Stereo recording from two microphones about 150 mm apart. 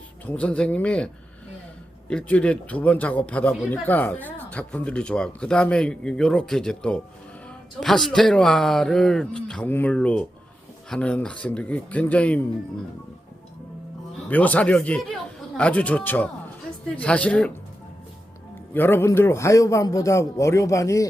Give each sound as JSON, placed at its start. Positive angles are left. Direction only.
{"t": 0.3, "sound": "a man's voice", "side_deg": 10}
{"t": 14.3, "sound": "a man's voice", "side_deg": 10}
{"t": 18.7, "sound": "a man's voice", "side_deg": 15}